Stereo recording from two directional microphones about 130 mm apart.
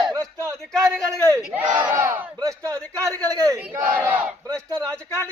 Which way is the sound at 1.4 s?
10° right (ahead or behind).